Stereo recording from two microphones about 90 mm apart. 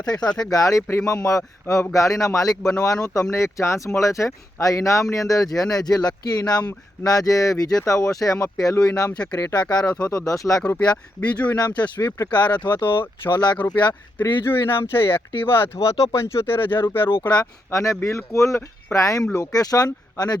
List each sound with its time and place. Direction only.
0.0 s speech: 50° left (ahead or behind)
0.5 s speech: 40° left (ahead or behind)
9.8 s speech: 15° left (ahead or behind)
10.1 s speech: 40° left (ahead or behind)
10.8 s speech: 15° left (ahead or behind)
11.5 s speech: 50° left (ahead or behind)
12.3 s speech: 15° left (ahead or behind)
14.4 s speech: 25° left (ahead or behind)
17.7 s speech: 35° left (ahead or behind)